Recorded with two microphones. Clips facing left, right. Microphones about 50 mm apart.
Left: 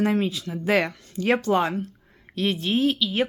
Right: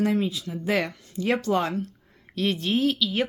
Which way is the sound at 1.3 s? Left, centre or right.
Left.